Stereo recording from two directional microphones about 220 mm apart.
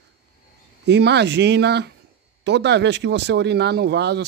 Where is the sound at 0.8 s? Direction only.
50° right (ahead or behind).